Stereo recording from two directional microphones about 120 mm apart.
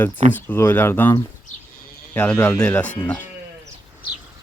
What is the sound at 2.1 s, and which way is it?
Speech, 10° left (ahead or behind).